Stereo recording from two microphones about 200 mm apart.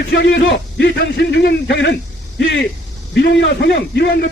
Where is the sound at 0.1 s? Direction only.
60° left (ahead or behind).